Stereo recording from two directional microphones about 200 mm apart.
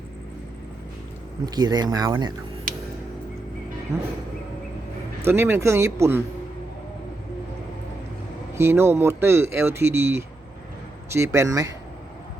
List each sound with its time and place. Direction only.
1.5 s speech: 20° right (ahead or behind)
2.7 s a sound: 45° right (ahead or behind)
3.9 s speech: 15° right (ahead or behind)
5.2 s speech: 10° right (ahead or behind)
8.5 s speech: 10° right (ahead or behind)